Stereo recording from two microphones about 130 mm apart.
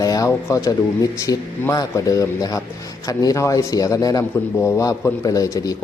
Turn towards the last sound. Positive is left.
turn(degrees=25)  # may be behind; listen again after turning